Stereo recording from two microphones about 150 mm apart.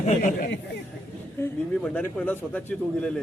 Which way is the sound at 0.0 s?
55° left (ahead or behind).